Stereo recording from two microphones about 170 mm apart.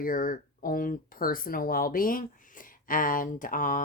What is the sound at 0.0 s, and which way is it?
Speech, 55° left (ahead or behind).